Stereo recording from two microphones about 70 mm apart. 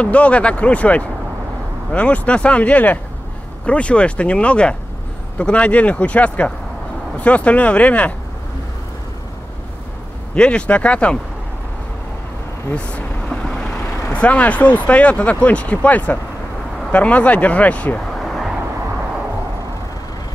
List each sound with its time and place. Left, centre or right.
0.0 s speech: centre
10.3 s speech: centre
12.7 s vehicle: centre
14.1 s speech: centre
18.1 s vehicle: centre